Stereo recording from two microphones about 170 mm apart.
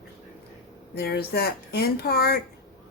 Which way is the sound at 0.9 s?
65° left (ahead or behind).